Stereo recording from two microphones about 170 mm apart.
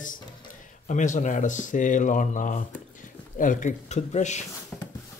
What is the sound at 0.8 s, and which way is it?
Speech, 45° left (ahead or behind).